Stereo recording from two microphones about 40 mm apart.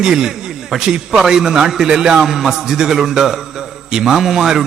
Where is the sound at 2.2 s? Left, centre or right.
Centre.